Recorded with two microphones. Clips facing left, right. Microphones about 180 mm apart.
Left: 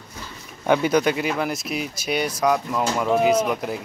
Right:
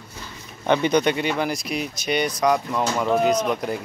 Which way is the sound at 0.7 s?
5° left (ahead or behind).